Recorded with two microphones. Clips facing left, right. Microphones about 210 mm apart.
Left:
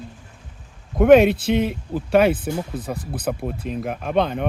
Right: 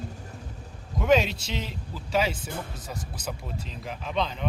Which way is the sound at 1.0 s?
55° left (ahead or behind).